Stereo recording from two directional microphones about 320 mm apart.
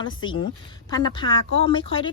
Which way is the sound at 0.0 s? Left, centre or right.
Centre.